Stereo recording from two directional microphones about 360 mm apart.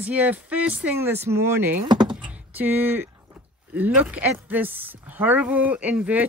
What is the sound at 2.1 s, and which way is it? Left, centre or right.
Door, centre.